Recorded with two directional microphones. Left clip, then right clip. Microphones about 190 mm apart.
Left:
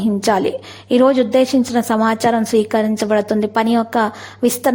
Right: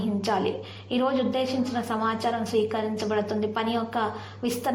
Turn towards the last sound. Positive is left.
turn(degrees=45)  # may be behind; listen again after turning